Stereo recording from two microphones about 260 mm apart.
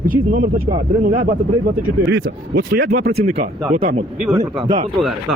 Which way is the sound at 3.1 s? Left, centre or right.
Right.